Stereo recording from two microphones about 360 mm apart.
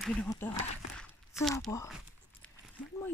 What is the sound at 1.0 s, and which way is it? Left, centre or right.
Walk, centre.